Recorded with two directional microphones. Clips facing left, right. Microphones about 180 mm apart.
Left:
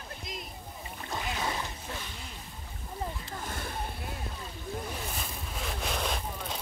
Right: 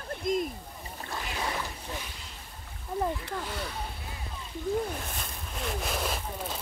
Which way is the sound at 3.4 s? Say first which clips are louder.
Right 2 dB; 50° left (ahead or behind).